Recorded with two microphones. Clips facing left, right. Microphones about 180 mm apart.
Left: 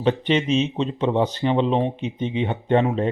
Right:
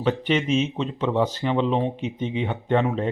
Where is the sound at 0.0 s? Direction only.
25° left (ahead or behind).